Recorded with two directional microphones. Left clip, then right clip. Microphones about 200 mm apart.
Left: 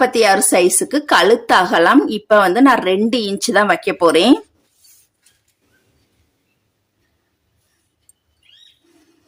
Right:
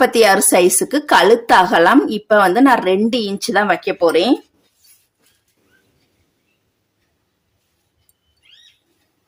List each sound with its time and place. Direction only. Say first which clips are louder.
0.0 s a woman's voice: right 1 dB; 10° right (ahead or behind); by 3.9 s 5° left (ahead or behind)
3.9 s speech: left 3 dB; 20° left (ahead or behind)